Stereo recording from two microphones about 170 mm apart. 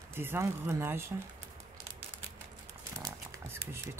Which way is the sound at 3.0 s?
15° right (ahead or behind).